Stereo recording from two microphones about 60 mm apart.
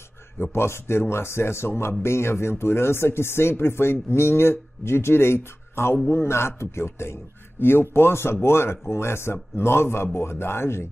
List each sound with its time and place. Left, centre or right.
0.4 s a man's voice: left